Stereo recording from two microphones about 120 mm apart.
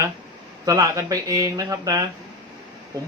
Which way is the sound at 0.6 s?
30° right (ahead or behind).